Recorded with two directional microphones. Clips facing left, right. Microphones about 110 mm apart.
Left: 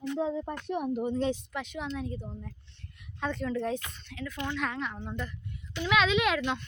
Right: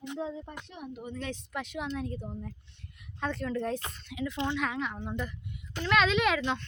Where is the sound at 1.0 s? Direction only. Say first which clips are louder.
Left 7 dB; 25° left (ahead or behind).